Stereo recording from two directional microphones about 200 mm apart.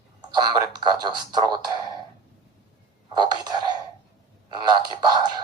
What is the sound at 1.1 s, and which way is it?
Speech, 20° right (ahead or behind).